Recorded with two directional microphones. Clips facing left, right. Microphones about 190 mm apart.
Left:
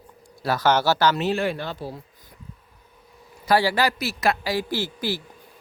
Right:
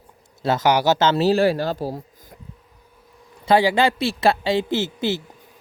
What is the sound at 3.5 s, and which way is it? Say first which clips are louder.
Speech: right 4 dB; 25° right (ahead or behind).